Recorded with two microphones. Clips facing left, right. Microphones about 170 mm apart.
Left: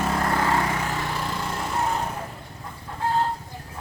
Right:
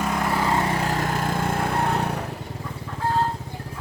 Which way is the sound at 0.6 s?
35° right (ahead or behind).